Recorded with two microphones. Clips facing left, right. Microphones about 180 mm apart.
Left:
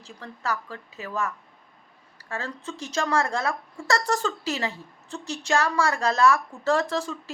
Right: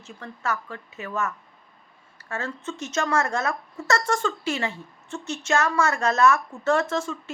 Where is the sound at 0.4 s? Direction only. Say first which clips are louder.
Right 1 dB; 35° left (ahead or behind).